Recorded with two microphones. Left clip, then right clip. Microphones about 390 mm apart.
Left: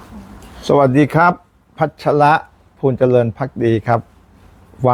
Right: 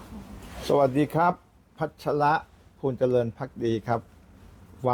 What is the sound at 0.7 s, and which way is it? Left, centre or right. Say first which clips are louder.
A man's voice: left 10 dB; left.